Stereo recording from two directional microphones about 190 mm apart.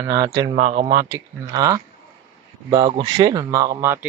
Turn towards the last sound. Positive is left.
turn(degrees=-15)  # may be behind; listen again after turning